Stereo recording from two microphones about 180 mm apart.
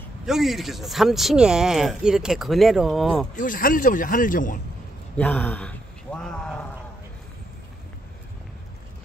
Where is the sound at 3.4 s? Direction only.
50° left (ahead or behind).